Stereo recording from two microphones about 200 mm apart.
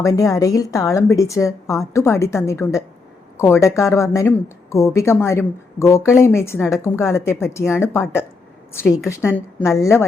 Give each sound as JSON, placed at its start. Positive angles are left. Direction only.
{"t": 0.0, "sound": "a woman's voice", "side_deg": 15}